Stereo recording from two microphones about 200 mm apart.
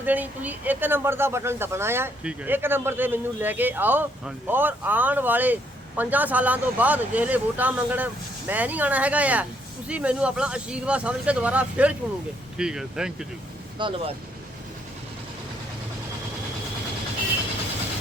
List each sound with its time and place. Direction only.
0.0 s speech: 10° right (ahead or behind)
13.7 s speech: 25° right (ahead or behind)